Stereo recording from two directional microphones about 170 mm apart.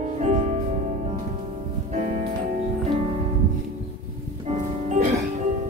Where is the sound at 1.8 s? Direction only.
45° right (ahead or behind).